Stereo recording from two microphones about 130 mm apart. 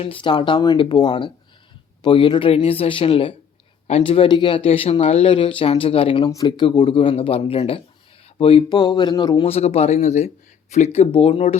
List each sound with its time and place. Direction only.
0.0 s speech: 40° left (ahead or behind)
6.3 s speech: 35° left (ahead or behind)
8.7 s speech: 35° left (ahead or behind)
9.4 s speech: 55° left (ahead or behind)